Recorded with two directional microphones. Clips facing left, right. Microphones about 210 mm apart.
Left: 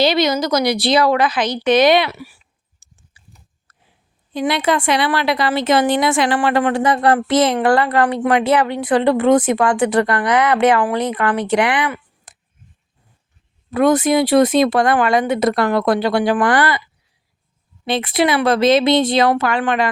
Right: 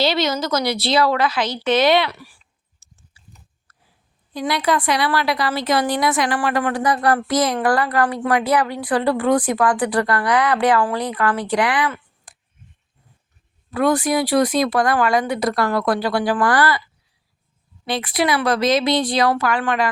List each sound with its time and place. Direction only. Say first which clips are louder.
0.0 s a woman's voice: left 4 dB; 15° left (ahead or behind)
13.7 s speech: left 4 dB; 20° left (ahead or behind)